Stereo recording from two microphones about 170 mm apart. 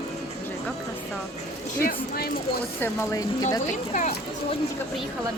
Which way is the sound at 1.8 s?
60° left (ahead or behind).